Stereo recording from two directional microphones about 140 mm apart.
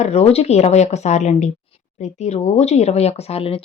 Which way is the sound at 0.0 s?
50° left (ahead or behind).